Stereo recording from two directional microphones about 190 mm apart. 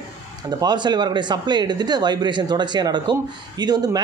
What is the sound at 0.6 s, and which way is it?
A man's voice, 20° right (ahead or behind).